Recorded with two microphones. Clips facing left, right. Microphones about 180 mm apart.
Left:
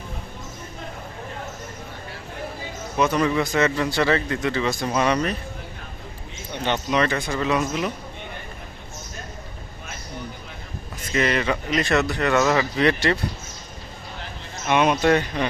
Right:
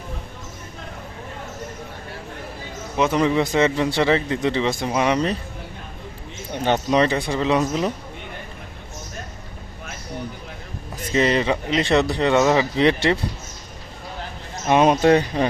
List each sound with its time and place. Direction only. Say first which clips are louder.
3.0 s speech: right 2 dB; 20° right (ahead or behind)
6.5 s speech: right 4 dB; 45° right (ahead or behind)
7.0 s speech: right 3 dB; 30° right (ahead or behind)
11.1 s speech: right 3 dB; 30° right (ahead or behind)
14.7 s speech: right 3 dB; 35° right (ahead or behind)